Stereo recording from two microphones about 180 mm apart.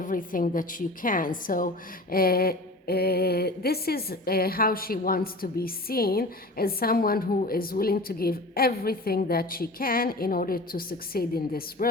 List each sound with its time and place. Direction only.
0.0 s a woman's voice: 50° left (ahead or behind)